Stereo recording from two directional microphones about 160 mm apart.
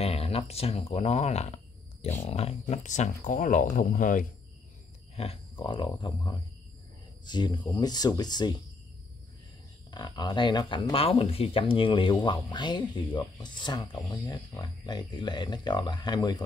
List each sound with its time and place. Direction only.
0.0 s speech: 40° left (ahead or behind); by 4.3 s 55° left (ahead or behind)
5.1 s speech: 40° left (ahead or behind)
9.8 s speech: 25° left (ahead or behind)